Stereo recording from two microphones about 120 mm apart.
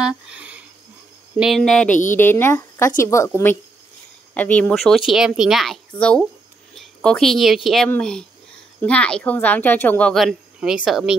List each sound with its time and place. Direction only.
0.0 s a sound: 5° right (ahead or behind)
1.6 s speech: 10° left (ahead or behind)
2.1 s a woman's voice: 20° left (ahead or behind)
4.3 s speech: 10° left (ahead or behind)
4.7 s a woman's voice: centre (ahead or behind)
10.1 s speech: 5° right (ahead or behind)